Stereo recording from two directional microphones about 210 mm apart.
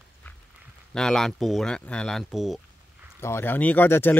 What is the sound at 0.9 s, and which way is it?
Speech, 5° left (ahead or behind).